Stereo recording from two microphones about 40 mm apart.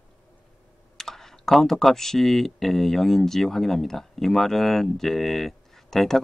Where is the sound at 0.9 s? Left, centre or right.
Centre.